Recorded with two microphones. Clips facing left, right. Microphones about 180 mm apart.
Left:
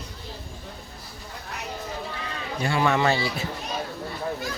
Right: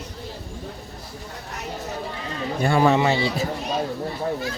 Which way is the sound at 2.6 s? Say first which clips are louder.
Right 5 dB; 50° right (ahead or behind).